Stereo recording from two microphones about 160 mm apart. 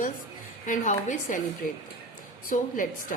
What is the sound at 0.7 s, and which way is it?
A woman's voice, 50° left (ahead or behind).